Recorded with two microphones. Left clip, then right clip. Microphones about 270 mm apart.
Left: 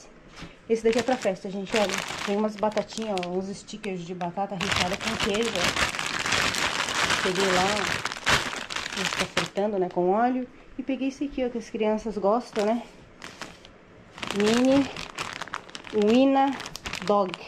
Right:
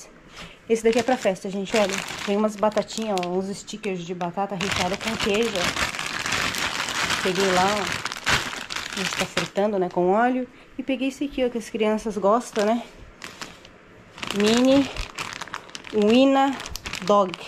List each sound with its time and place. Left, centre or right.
0.7 s speech: centre
3.3 s speech: left
3.8 s speech: centre
9.7 s speech: centre
12.2 s speech: left
14.2 s speech: centre
14.9 s crumpling: centre